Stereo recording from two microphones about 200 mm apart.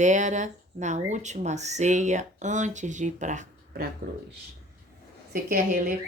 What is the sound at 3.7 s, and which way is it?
Speech, 50° right (ahead or behind).